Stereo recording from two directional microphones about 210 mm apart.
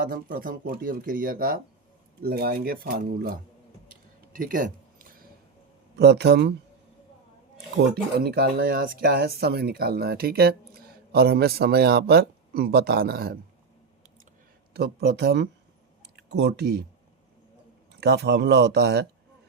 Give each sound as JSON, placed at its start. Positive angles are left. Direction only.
{"t": 0.1, "sound": "speech", "side_deg": -45}
{"t": 3.8, "sound": "a sound", "side_deg": -40}
{"t": 6.0, "sound": "speech", "side_deg": -50}
{"t": 8.2, "sound": "speech", "side_deg": -50}
{"t": 14.7, "sound": "speech", "side_deg": -50}
{"t": 18.0, "sound": "speech", "side_deg": -50}